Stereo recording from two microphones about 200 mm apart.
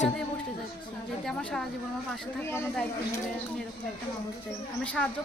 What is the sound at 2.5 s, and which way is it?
Speech, 10° left (ahead or behind).